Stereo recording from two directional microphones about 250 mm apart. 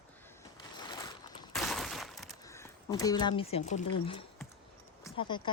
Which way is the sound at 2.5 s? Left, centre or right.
Centre.